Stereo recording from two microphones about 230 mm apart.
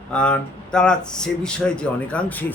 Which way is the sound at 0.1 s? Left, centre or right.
Centre.